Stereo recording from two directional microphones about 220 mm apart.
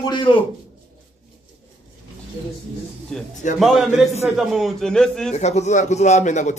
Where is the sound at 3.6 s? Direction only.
Centre (ahead or behind).